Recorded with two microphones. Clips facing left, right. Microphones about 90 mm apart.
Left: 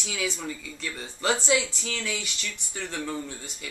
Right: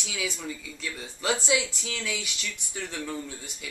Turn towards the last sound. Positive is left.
turn(degrees=-5)  # may be behind; listen again after turning